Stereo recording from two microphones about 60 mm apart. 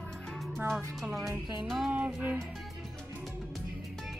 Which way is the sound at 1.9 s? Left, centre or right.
Right.